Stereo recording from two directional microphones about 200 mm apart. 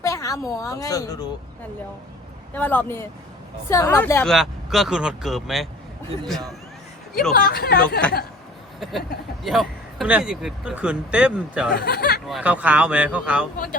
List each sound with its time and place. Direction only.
0.0 s a woman's voice: 15° left (ahead or behind)
2.5 s a man's voice: 10° left (ahead or behind)
7.3 s speech: 50° left (ahead or behind)
8.8 s speech: centre (ahead or behind)
11.7 s speech: 50° left (ahead or behind)
12.3 s a man's voice: 5° right (ahead or behind)